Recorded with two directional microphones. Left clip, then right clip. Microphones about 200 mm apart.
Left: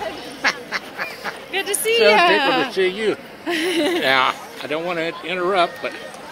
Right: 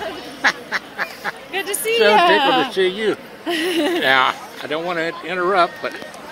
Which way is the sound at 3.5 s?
50° right (ahead or behind).